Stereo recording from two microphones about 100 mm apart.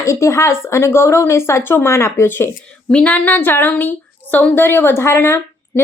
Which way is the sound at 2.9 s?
10° left (ahead or behind).